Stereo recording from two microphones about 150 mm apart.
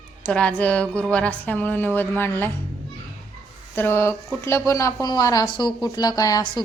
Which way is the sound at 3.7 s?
15° left (ahead or behind).